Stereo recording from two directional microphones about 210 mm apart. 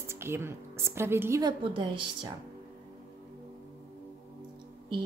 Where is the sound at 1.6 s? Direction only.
25° right (ahead or behind).